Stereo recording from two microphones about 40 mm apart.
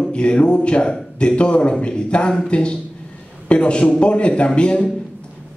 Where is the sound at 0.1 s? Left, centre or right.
Left.